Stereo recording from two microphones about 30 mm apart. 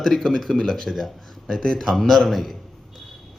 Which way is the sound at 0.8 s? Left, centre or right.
Centre.